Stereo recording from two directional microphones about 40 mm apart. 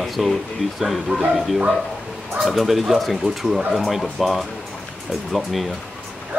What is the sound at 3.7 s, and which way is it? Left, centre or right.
Speech, centre.